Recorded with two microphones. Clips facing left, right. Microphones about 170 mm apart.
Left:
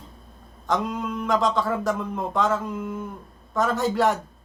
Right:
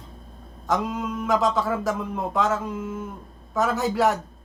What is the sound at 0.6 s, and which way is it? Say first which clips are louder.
A man's voice: even; 5° right (ahead or behind).